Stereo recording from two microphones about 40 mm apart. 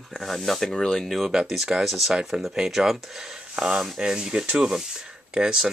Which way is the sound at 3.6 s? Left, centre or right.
Centre.